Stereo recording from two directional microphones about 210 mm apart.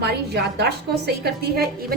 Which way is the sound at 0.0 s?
50° right (ahead or behind).